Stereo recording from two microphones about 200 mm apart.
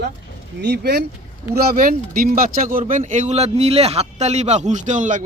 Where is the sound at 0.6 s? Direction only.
55° right (ahead or behind).